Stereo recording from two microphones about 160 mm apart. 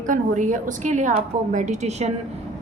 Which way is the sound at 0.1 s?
50° right (ahead or behind).